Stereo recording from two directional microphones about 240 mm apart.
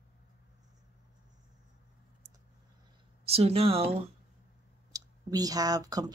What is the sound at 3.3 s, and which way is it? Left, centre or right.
Speech, right.